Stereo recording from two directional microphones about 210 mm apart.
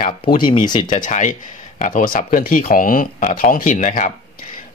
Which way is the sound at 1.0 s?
40° left (ahead or behind).